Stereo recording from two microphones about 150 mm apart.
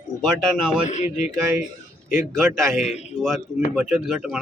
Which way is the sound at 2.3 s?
Centre (ahead or behind).